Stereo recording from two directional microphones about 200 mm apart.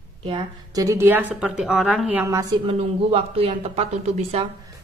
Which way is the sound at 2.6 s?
30° right (ahead or behind).